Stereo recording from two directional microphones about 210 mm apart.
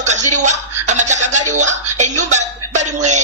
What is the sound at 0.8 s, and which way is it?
Chuckle, 35° right (ahead or behind).